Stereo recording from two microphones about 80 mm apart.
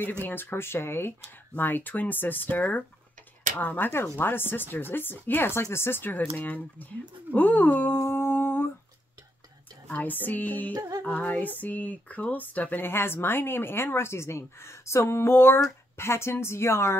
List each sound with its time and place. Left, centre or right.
0.2 s speech: left
7.3 s a sound: left
9.8 s speech: left
10.7 s music: right
11.1 s a woman's voice: left